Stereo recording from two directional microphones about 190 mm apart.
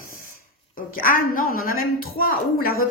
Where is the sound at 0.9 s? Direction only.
45° left (ahead or behind).